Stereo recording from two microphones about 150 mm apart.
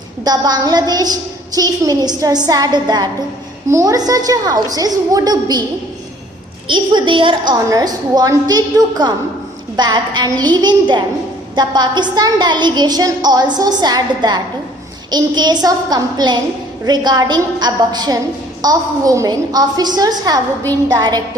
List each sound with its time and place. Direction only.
0.3 s a woman's voice: 25° right (ahead or behind)
6.7 s a woman's voice: 30° right (ahead or behind)